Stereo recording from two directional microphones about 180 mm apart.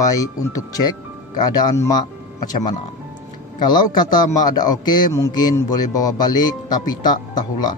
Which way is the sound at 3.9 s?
20° left (ahead or behind).